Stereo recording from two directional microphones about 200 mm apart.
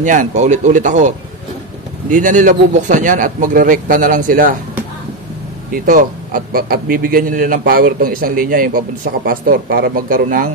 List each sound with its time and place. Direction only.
0.0 s speech: 40° right (ahead or behind)
5.7 s a man's voice: 45° right (ahead or behind)